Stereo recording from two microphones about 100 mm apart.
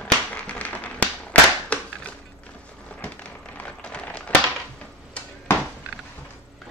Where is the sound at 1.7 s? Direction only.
10° left (ahead or behind).